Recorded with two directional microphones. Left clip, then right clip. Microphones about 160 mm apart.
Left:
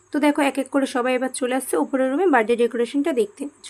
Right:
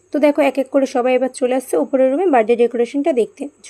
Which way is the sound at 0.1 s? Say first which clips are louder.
Right 6 dB; 15° right (ahead or behind).